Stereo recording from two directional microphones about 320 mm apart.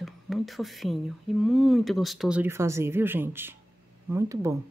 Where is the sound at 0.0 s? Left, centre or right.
Centre.